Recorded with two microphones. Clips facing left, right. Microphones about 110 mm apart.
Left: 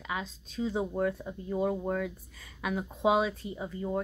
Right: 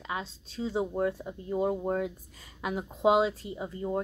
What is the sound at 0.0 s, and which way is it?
Speech, 30° right (ahead or behind).